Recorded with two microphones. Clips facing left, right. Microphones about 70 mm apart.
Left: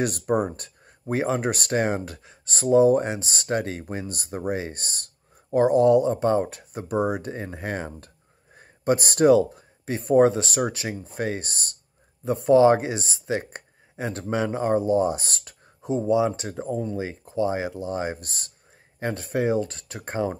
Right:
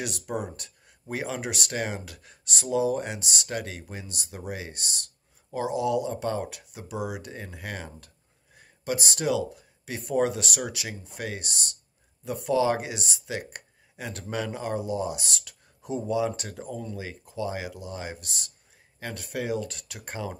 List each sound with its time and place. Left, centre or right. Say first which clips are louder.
0.0 s speech: left 9 dB; left